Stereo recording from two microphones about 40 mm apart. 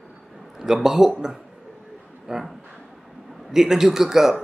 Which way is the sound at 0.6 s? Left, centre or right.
Centre.